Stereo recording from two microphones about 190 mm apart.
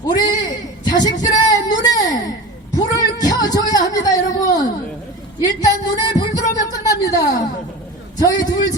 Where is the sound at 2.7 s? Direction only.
20° left (ahead or behind).